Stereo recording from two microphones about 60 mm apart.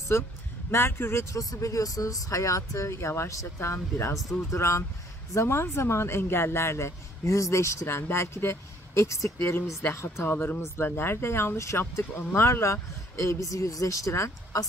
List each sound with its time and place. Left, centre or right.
0.1 s speech: left
1.5 s speech: left
7.8 s speech: left
9.4 s speech: left
10.2 s speech: left